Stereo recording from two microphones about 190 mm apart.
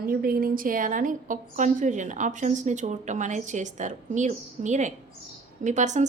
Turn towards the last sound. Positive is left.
turn(degrees=-40)  # may be behind; listen again after turning